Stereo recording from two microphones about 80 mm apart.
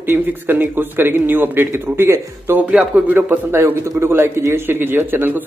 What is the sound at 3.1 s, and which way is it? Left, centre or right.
A man's voice, right.